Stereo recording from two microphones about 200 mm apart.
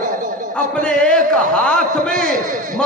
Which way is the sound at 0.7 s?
5° left (ahead or behind).